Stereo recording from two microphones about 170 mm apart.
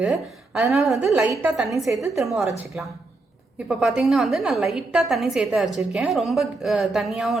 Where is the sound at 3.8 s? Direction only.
Centre (ahead or behind).